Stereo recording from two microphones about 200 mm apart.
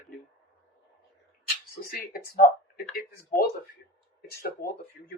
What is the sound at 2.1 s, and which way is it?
Speech, 50° left (ahead or behind).